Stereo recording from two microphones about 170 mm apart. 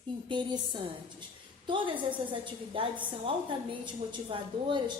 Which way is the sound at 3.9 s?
30° right (ahead or behind).